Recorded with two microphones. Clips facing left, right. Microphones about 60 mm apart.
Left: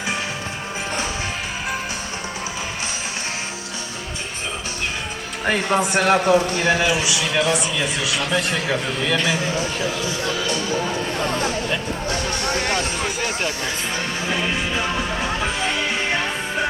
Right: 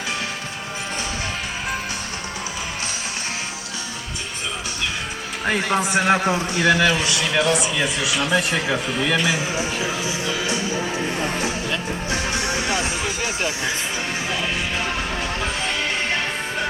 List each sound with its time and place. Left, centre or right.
5.7 s a man's voice: centre
6.0 s a man's voice: left
6.7 s a man's voice: centre
7.0 s a man's voice: centre
10.1 s a man's voice: left
12.1 s speech: centre
12.5 s a man's voice: left
15.4 s music: centre